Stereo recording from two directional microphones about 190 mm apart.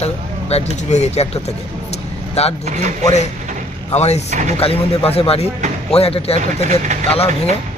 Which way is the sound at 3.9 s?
35° left (ahead or behind).